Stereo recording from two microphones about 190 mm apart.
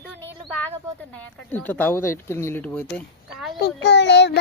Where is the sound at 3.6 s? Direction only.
65° left (ahead or behind).